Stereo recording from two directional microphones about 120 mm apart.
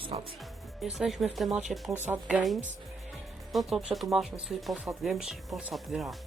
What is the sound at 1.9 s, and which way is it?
Speech, 15° right (ahead or behind).